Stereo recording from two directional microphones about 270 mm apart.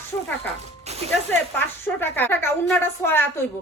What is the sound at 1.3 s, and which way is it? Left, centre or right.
Speech, centre.